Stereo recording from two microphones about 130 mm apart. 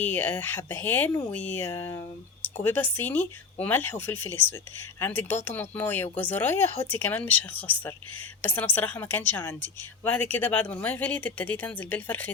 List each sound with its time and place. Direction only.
0.0 s a woman's voice: 15° left (ahead or behind)